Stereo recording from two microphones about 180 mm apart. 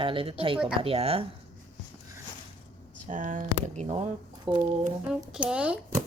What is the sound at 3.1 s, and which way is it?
Speech, 45° right (ahead or behind).